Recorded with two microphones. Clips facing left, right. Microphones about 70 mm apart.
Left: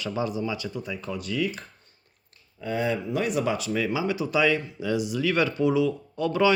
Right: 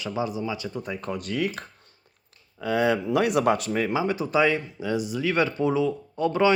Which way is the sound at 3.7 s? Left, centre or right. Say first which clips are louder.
Right 1 dB; right.